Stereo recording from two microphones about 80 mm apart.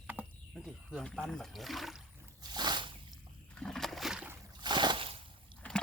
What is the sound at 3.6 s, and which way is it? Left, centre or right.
Splash, centre.